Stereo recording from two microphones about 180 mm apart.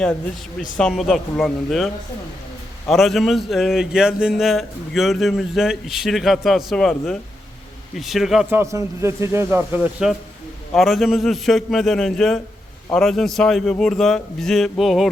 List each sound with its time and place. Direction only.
0.8 s a man's voice: centre (ahead or behind)